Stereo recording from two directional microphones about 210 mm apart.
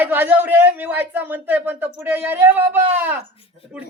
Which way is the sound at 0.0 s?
10° right (ahead or behind).